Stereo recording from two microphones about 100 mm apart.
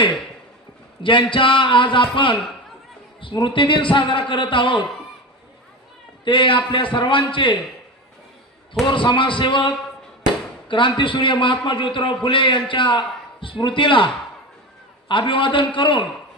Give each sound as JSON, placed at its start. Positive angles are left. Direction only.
{"t": 1.0, "sound": "a man's voice", "side_deg": 55}
{"t": 6.2, "sound": "a man's voice", "side_deg": 55}
{"t": 8.9, "sound": "a man's voice", "side_deg": 55}